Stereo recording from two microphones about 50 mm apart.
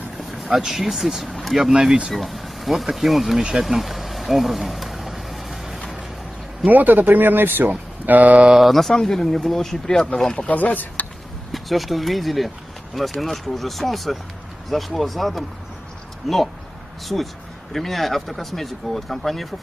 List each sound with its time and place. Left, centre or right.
0.5 s speech: centre
2.1 s speech: centre
3.6 s vehicle: centre
6.6 s speech: right
7.7 s speech: right
8.5 s speech: centre
10.5 s speech: left
11.5 s speech: centre
17.7 s speech: centre